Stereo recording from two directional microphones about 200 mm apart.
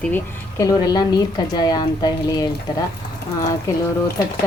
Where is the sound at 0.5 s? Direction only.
15° left (ahead or behind).